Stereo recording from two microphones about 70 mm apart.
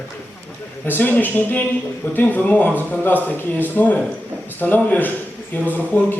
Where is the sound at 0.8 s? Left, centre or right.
Left.